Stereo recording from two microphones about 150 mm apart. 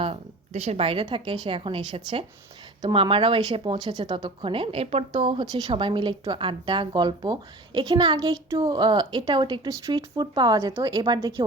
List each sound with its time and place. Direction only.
0.0 s speech: 45° right (ahead or behind); by 11.4 s 25° right (ahead or behind)